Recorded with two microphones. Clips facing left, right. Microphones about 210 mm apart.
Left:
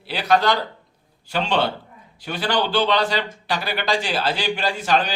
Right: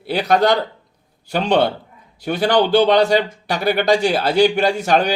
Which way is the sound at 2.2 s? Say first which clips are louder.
Right 7 dB; 55° right (ahead or behind).